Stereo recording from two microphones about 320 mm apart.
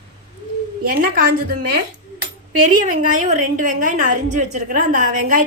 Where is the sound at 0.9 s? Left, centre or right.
Right.